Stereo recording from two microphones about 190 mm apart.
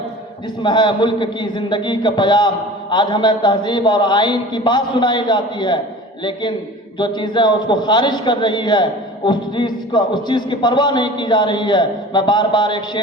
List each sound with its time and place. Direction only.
0.6 s a man's voice: 25° left (ahead or behind)
7.0 s a man's voice: 25° left (ahead or behind)